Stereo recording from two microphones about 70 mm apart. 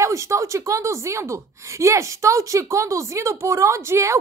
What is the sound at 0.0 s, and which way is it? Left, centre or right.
A woman's voice, right.